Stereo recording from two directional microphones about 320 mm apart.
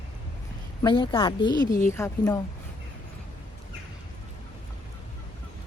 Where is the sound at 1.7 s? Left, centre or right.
Left.